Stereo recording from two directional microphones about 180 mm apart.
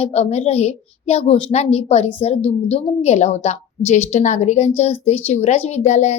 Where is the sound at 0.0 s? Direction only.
35° left (ahead or behind).